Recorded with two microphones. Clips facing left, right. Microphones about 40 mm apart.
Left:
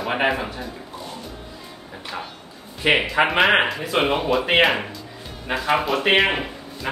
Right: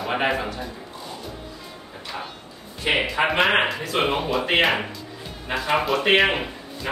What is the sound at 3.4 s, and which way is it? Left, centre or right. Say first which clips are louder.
Speech: left 1 dB; centre.